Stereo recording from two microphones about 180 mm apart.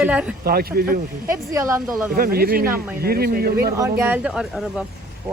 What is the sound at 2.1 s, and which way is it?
A man's voice, 55° right (ahead or behind).